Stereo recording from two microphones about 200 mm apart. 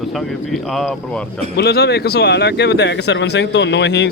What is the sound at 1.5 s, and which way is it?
Speech, 55° left (ahead or behind).